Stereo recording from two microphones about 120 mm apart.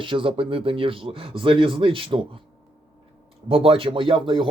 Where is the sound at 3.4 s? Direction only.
50° right (ahead or behind).